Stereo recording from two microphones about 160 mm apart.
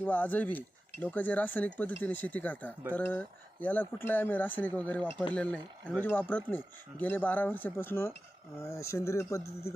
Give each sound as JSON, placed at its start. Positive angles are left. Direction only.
{"t": 0.0, "sound": "speech", "side_deg": 10}